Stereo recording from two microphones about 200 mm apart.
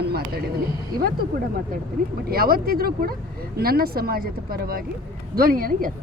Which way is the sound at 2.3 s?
50° right (ahead or behind).